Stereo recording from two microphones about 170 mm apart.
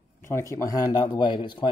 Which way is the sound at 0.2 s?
15° left (ahead or behind).